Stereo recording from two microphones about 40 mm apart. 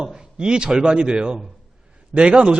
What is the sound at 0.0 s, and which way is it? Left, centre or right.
A man's voice, right.